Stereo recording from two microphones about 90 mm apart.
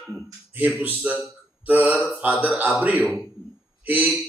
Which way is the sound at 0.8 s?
20° right (ahead or behind).